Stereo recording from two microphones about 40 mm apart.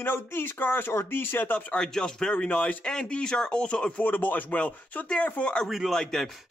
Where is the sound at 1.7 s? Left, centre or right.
Centre.